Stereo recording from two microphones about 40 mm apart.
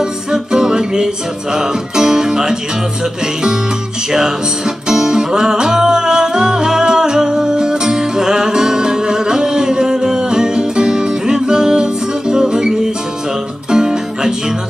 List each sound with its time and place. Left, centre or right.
0.0 s music: centre
4.1 s music: centre